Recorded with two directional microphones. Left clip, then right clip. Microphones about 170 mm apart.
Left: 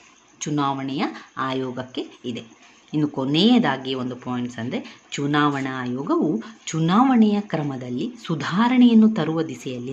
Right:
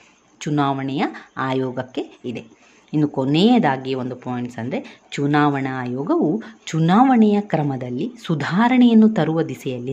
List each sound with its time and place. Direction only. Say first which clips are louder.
0.5 s speech: right 3 dB; 20° right (ahead or behind)